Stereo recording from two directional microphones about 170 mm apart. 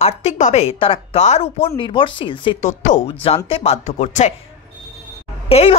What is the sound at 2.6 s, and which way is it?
Speech, 45° left (ahead or behind).